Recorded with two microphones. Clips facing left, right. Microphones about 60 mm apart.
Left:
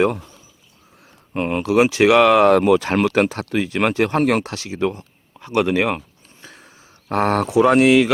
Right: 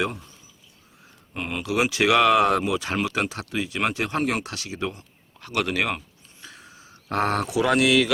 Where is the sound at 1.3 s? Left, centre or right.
Left.